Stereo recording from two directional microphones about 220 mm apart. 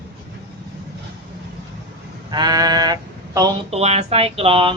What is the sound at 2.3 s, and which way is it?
Speech, 15° right (ahead or behind).